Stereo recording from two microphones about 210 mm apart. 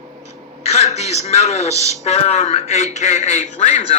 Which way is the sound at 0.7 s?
30° left (ahead or behind).